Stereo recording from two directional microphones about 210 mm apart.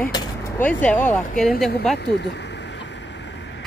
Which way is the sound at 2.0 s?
55° left (ahead or behind).